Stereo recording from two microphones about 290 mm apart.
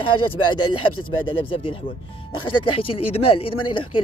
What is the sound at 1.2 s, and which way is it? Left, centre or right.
Speech, centre.